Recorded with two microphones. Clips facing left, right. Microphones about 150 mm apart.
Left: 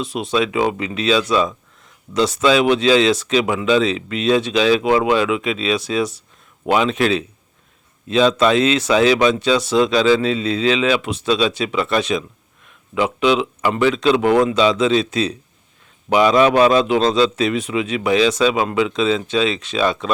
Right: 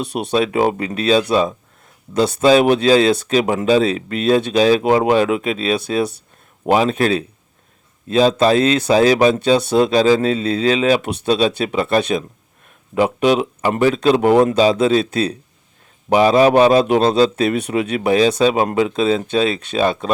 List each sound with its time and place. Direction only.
0.3 s speech: 45° right (ahead or behind)
3.4 s speech: 35° right (ahead or behind)
3.8 s speech: 50° right (ahead or behind)
6.7 s speech: 40° right (ahead or behind)
9.3 s speech: 55° right (ahead or behind)
9.8 s speech: 35° right (ahead or behind)
16.0 s speech: 35° right (ahead or behind)
16.8 s speech: 45° right (ahead or behind)
18.0 s speech: 35° right (ahead or behind)